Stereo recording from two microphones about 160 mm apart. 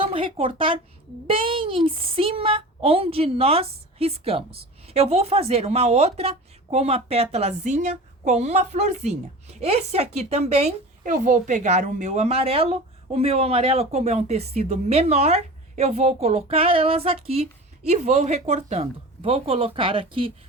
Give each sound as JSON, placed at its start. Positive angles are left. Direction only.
{"t": 0.0, "sound": "a woman's voice", "side_deg": -35}